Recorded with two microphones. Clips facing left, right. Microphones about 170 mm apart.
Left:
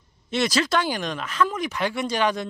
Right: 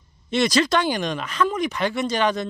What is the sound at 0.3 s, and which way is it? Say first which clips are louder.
Speech: right 3 dB; 5° left (ahead or behind).